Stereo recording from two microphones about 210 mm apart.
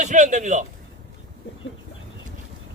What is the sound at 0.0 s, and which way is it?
Speech, 35° right (ahead or behind).